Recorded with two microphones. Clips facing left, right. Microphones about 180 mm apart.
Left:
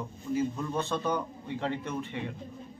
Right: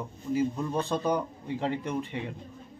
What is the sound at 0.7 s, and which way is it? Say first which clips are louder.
Speech: right 2 dB; 35° right (ahead or behind).